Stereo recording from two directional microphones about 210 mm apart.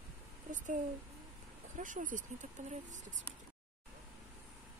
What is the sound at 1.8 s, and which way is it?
Speech, 40° right (ahead or behind).